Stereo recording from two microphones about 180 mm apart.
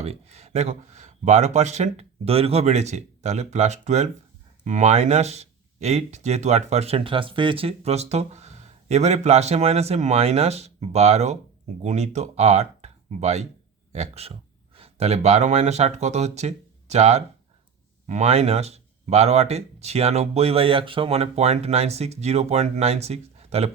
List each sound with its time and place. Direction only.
0.0 s speech: 35° right (ahead or behind)